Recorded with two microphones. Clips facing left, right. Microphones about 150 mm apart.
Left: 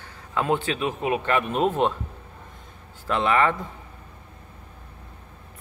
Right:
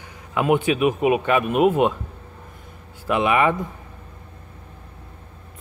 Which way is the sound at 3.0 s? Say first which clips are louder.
Right 3 dB; 15° right (ahead or behind).